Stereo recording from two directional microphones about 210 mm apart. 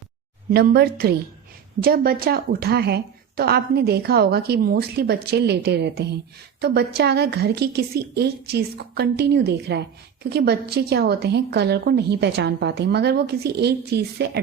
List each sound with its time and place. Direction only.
0.5 s a woman's voice: 45° right (ahead or behind)